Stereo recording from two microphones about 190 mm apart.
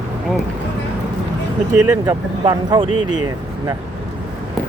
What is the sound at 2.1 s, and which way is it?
Speech, 20° right (ahead or behind).